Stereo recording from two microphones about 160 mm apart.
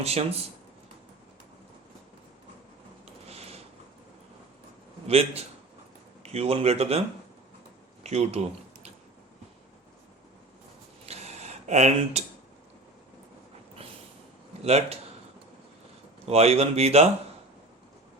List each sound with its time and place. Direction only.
0.0 s speech: 40° right (ahead or behind)
3.2 s a sound: 40° right (ahead or behind)
5.0 s speech: 40° right (ahead or behind)
8.0 s speech: 40° right (ahead or behind)
11.0 s a sound: 40° right (ahead or behind)
14.6 s speech: 40° right (ahead or behind)
16.2 s speech: 40° right (ahead or behind)